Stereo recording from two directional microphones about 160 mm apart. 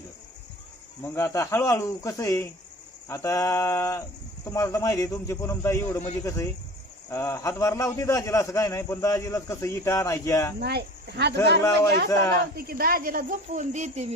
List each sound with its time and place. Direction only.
1.0 s a man's voice: 20° left (ahead or behind)
10.6 s speech: 90° right
12.1 s a man's voice: 20° left (ahead or behind)
12.5 s speech: 65° right (ahead or behind); by 14.1 s 45° right (ahead or behind)